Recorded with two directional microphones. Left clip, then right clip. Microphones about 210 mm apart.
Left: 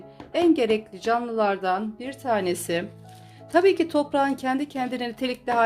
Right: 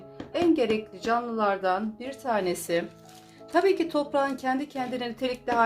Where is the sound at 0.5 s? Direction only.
45° left (ahead or behind).